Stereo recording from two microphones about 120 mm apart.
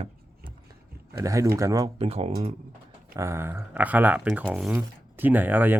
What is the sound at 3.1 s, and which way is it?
A man's voice, 20° right (ahead or behind).